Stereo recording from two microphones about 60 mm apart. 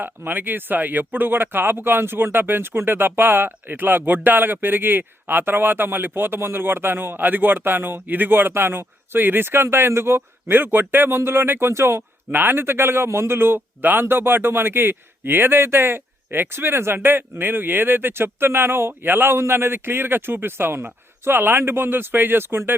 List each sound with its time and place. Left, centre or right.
0.0 s speech: right